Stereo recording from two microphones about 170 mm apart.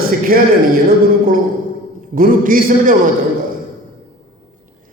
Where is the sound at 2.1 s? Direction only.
55° right (ahead or behind).